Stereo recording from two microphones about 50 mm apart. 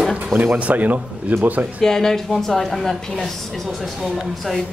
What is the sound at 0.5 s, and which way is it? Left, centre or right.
Speech, right.